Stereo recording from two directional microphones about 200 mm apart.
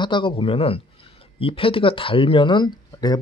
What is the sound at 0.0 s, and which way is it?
Speech, 25° left (ahead or behind).